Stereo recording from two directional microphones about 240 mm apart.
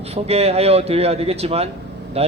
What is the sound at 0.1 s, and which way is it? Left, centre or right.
A man's voice, right.